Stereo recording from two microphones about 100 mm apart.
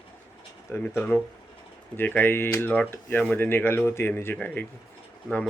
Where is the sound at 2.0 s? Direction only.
20° left (ahead or behind).